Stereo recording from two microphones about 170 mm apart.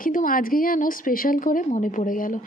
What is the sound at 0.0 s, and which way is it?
A woman's voice, 55° left (ahead or behind).